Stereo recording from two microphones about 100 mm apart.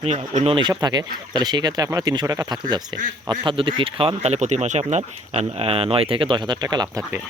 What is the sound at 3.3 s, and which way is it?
Speech, 60° right (ahead or behind).